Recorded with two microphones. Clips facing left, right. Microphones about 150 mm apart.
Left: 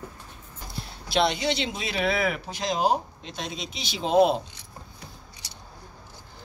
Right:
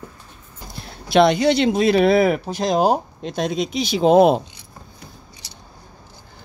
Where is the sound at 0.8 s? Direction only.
55° right (ahead or behind).